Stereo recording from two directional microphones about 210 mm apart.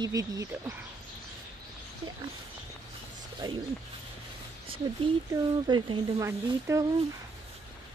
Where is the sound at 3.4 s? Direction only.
20° right (ahead or behind).